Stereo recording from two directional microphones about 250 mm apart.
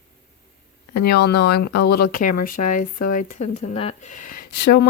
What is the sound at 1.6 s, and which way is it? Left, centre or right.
Speech, left.